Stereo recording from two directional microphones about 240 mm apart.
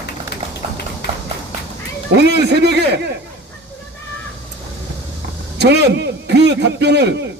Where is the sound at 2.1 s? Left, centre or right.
Right.